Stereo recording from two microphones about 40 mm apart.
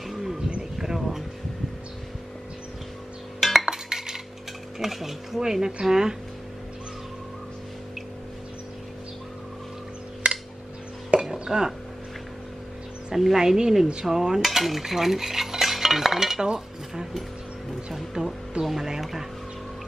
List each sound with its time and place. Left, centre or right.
0.0 s wild animals: centre
0.7 s a sound: centre
3.3 s cutlery: centre
4.7 s speech: centre
10.2 s a sound: right
11.4 s speech: centre
13.1 s speech: centre
14.0 s cutlery: centre
16.5 s dishes: centre
17.9 s speech: centre